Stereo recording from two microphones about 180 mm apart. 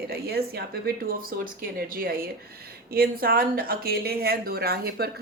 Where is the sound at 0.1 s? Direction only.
60° right (ahead or behind).